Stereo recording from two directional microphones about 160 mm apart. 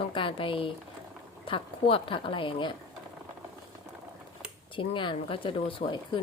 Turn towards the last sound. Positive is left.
turn(degrees=30)  # may be behind; listen again after turning